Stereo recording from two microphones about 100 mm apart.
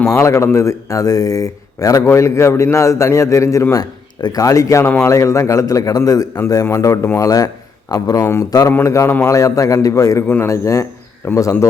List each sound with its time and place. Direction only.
0.1 s a man's voice: 30° left (ahead or behind)